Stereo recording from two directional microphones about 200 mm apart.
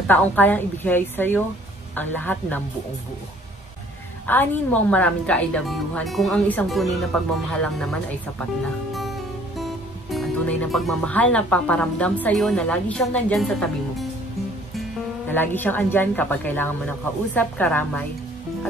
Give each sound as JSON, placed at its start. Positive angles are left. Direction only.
{"t": 0.1, "sound": "a woman's voice", "side_deg": 10}
{"t": 4.3, "sound": "a woman's voice", "side_deg": 10}
{"t": 9.6, "sound": "speech", "side_deg": 0}
{"t": 15.2, "sound": "a woman's voice", "side_deg": 10}